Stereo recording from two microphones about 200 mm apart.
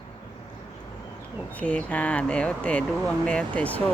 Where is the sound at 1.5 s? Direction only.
5° left (ahead or behind).